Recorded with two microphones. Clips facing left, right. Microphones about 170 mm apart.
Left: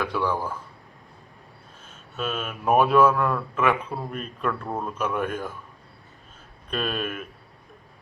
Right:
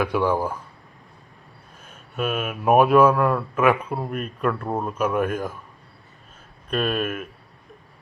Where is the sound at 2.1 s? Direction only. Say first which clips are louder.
Right 4 dB; 10° right (ahead or behind).